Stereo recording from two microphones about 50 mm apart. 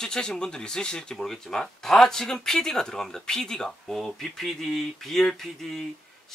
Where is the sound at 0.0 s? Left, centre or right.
Centre.